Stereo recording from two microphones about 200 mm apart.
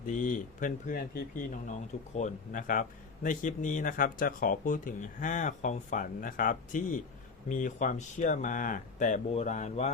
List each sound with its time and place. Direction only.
0.0 s speech: 40° left (ahead or behind)